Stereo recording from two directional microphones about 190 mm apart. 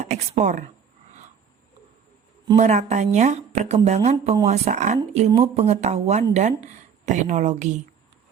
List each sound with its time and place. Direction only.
0.0 s speech: 40° right (ahead or behind)
2.6 s speech: 35° right (ahead or behind)